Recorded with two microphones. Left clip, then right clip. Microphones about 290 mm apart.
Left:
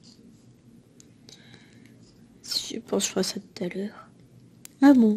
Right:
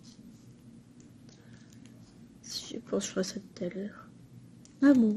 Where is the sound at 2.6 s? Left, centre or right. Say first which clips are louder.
Left 3 dB; left.